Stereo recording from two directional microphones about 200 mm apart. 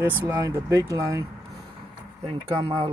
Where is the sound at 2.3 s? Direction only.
25° right (ahead or behind).